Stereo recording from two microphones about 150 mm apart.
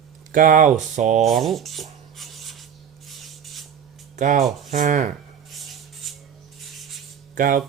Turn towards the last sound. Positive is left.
turn(degrees=-60)  # may be behind; listen again after turning